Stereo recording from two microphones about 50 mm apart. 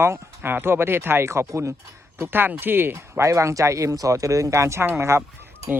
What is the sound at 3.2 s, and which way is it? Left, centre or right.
Speech, right.